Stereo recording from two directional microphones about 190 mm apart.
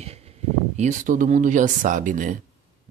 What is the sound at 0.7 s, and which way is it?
Speech, 40° right (ahead or behind).